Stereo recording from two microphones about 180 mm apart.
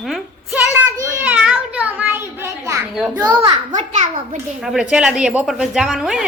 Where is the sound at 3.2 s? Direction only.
10° right (ahead or behind).